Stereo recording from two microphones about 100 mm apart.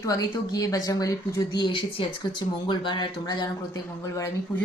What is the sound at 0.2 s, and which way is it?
Speech, 40° left (ahead or behind).